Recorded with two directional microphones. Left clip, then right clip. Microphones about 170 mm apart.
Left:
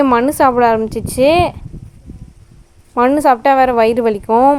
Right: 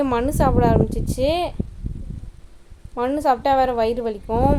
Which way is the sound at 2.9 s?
40° left (ahead or behind).